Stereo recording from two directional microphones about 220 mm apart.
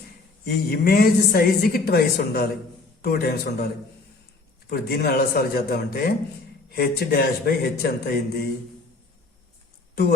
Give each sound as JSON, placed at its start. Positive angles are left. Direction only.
{"t": 0.4, "sound": "a woman's voice", "side_deg": 45}
{"t": 4.7, "sound": "a woman's voice", "side_deg": 45}